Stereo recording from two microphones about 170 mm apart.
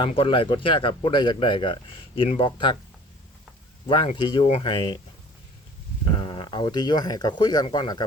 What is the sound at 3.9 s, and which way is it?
Speech, 30° left (ahead or behind).